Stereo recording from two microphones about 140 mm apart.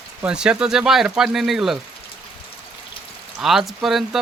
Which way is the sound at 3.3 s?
5° right (ahead or behind).